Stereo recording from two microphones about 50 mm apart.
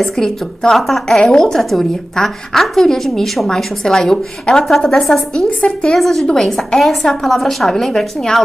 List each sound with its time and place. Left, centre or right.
0.0 s a woman's voice: centre
5.6 s a woman's voice: centre
5.9 s a woman's voice: centre